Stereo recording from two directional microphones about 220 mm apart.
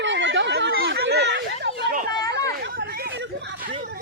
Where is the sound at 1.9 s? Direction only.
40° right (ahead or behind).